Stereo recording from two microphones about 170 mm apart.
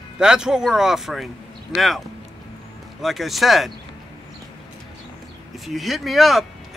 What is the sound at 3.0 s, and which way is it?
Speech, centre (ahead or behind).